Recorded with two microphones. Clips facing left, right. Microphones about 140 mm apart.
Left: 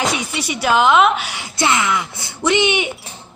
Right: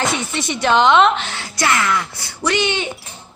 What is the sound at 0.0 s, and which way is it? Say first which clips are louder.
A woman's voice: even; 10° left (ahead or behind).